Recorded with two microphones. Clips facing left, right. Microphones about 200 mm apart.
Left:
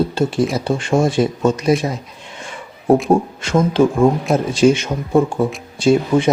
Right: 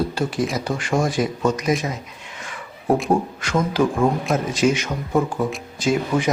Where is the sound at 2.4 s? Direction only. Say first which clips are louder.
Left 5 dB; 25° left (ahead or behind).